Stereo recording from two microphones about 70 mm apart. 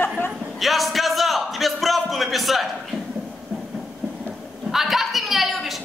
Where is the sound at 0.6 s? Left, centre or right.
Centre.